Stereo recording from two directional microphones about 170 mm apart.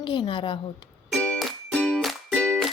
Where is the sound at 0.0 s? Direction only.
30° left (ahead or behind).